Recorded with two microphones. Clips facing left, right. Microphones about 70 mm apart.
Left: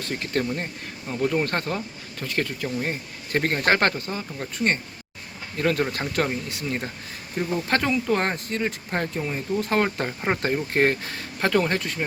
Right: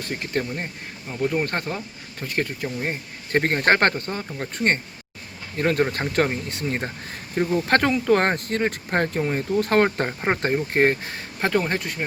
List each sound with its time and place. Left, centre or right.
0.0 s speech: right
1.0 s speech: centre
1.5 s speech: centre; by 4.8 s right
5.5 s speech: right
10.2 s speech: centre